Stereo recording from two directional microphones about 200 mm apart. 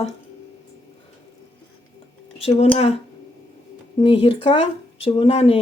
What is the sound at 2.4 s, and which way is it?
Speech, 30° left (ahead or behind).